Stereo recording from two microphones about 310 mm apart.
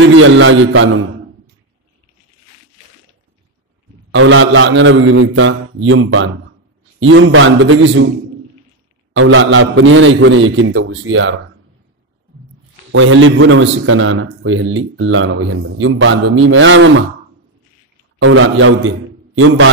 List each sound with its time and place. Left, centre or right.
0.2 s a man's voice: right
4.1 s a man's voice: right
9.1 s a man's voice: right
12.9 s a man's voice: right
18.2 s a man's voice: right